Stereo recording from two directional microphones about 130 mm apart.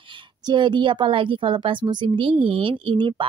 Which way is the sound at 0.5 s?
35° right (ahead or behind).